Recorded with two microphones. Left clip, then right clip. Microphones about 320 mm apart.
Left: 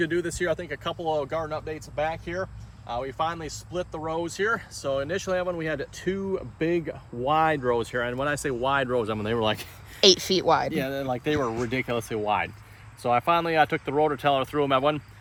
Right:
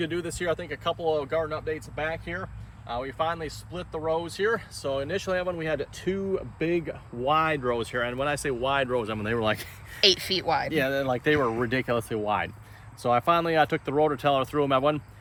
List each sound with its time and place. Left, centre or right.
0.0 s speech: left
2.8 s speech: left
10.8 s speech: centre